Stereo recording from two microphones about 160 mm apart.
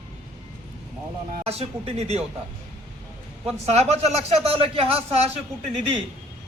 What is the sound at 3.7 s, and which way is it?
A man's voice, 40° right (ahead or behind).